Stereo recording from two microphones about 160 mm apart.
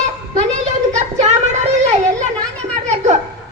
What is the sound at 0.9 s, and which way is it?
Child singing, 45° right (ahead or behind).